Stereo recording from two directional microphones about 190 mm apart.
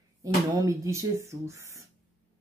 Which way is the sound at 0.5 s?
15° right (ahead or behind).